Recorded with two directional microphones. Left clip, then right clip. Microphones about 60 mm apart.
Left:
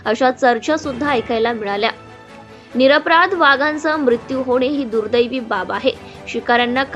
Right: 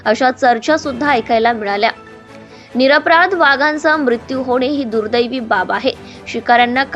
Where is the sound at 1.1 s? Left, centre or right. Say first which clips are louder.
Right 5 dB; right.